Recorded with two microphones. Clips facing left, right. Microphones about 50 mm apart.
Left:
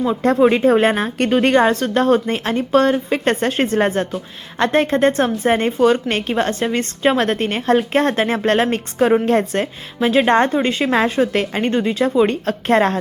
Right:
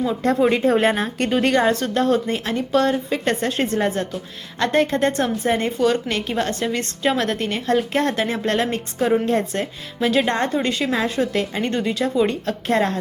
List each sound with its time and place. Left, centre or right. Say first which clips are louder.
0.0 s a woman's voice: left 4 dB; left
4.1 s a woman's voice: left 4 dB; left
6.1 s a woman's voice: left 4 dB; left
10.0 s a woman's voice: left 3 dB; left
10.2 s a woman's voice: left 6 dB; left
11.1 s a woman's voice: left 4 dB; left
11.7 s a woman's voice: left 6 dB; left
12.2 s a woman's voice: left 4 dB; left